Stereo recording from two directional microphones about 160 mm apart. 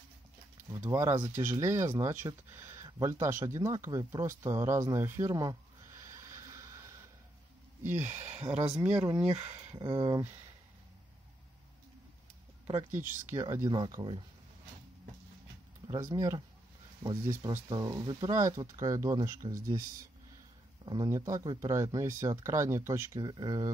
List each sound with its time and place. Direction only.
0.7 s speech: 15° right (ahead or behind)
6.3 s a sound: 20° right (ahead or behind)
7.8 s speech: 50° right (ahead or behind)
8.3 s speech: 40° right (ahead or behind)
9.8 s speech: 30° right (ahead or behind)
13.3 s speech: 20° right (ahead or behind)
15.9 s speech: 20° right (ahead or behind)
17.6 s speech: 25° right (ahead or behind)
20.8 s speech: 25° right (ahead or behind)
23.2 s speech: 30° right (ahead or behind)